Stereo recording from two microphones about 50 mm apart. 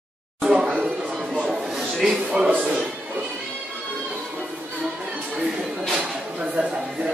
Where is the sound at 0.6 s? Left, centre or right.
Right.